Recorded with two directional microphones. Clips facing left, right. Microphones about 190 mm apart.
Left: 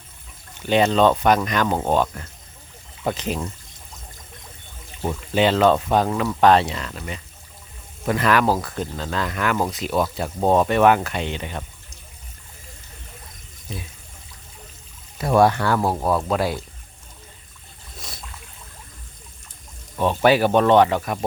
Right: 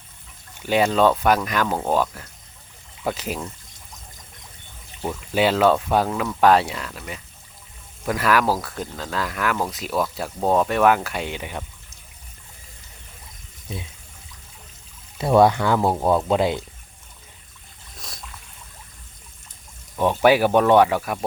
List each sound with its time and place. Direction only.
0.6 s speech: 10° right (ahead or behind)
5.3 s speech: 5° right (ahead or behind)
15.4 s speech: 20° right (ahead or behind)
17.9 s boat: centre (ahead or behind)
20.0 s speech: 15° right (ahead or behind)